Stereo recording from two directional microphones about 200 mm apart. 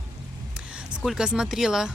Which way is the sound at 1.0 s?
Centre (ahead or behind).